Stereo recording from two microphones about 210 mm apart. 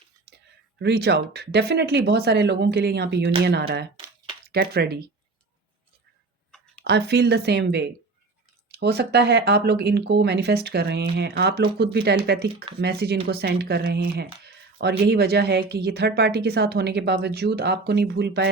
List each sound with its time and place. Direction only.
0.3 s a sound: 50° right (ahead or behind)
0.8 s speech: 50° right (ahead or behind)
6.8 s speech: 50° right (ahead or behind)